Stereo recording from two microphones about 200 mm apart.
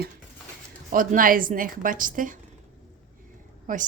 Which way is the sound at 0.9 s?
45° right (ahead or behind).